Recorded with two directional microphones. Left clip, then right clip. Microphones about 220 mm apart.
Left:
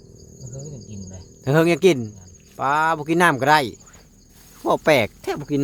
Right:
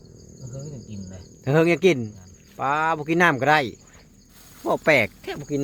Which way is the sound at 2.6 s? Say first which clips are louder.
Left 3 dB; 10° left (ahead or behind).